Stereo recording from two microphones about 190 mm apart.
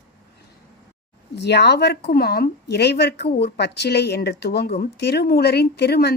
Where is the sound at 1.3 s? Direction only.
60° left (ahead or behind).